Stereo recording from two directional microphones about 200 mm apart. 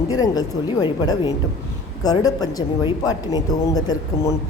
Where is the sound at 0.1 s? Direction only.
20° left (ahead or behind).